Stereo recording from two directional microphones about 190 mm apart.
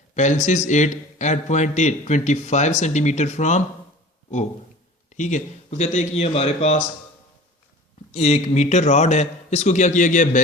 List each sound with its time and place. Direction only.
0.1 s a man's voice: 40° left (ahead or behind)
5.1 s a man's voice: 40° left (ahead or behind)
8.1 s a man's voice: 35° left (ahead or behind)